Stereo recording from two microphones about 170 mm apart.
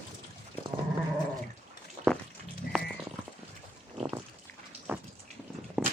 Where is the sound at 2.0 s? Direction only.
55° right (ahead or behind).